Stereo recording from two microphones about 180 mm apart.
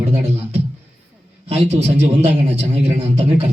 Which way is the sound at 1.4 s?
35° right (ahead or behind).